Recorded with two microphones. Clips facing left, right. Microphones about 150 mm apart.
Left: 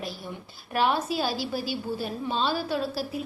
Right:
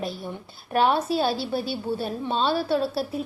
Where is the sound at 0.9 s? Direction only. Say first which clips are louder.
Right 4 dB; 30° right (ahead or behind).